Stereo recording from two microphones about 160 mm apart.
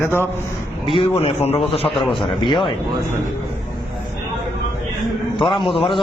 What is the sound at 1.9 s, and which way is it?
Speech, centre (ahead or behind).